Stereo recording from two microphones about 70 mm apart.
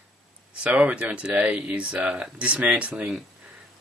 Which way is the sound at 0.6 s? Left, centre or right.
Centre.